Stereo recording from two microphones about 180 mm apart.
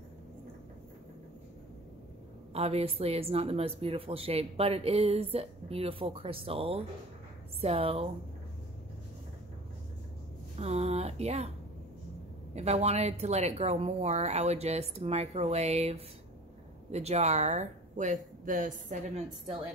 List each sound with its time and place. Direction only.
2.5 s a woman's voice: 35° right (ahead or behind)
10.6 s a woman's voice: 35° right (ahead or behind)
12.5 s a woman's voice: 35° right (ahead or behind)